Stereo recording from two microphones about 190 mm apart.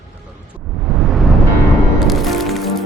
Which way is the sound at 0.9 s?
Centre (ahead or behind).